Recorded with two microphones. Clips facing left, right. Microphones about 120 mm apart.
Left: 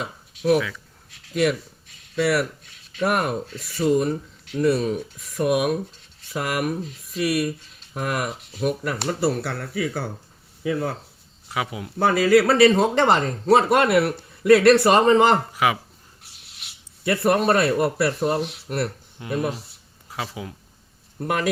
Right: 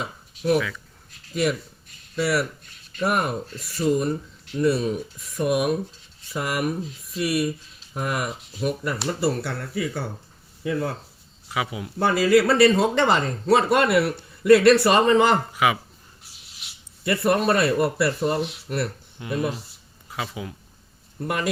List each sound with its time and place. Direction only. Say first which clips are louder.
0.0 s a sound: left 2 dB; centre (ahead or behind)
0.7 s speech: right 1 dB; centre (ahead or behind)
11.4 s speech: even; centre (ahead or behind)
15.5 s speech: even; 35° left (ahead or behind)
16.2 s rub: left 1 dB; centre (ahead or behind)
18.0 s speech: left 1 dB; centre (ahead or behind)
19.3 s a sound: left 1 dB; centre (ahead or behind)